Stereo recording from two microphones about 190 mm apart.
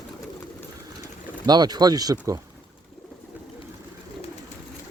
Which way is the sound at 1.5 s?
20° right (ahead or behind).